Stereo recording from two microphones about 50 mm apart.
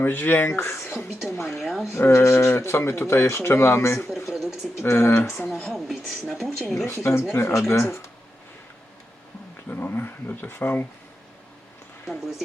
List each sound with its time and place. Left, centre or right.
0.0 s speech: left
1.5 s speech: centre
1.9 s speech: left
4.3 s a sound: centre
4.8 s speech: left
5.5 s speech: centre
6.8 s speech: left
9.6 s speech: left
12.0 s speech: centre